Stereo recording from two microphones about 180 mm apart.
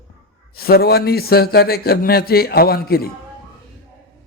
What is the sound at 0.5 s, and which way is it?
A man's voice, 60° left (ahead or behind).